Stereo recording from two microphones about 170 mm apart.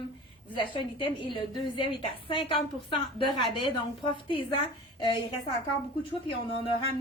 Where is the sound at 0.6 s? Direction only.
30° left (ahead or behind).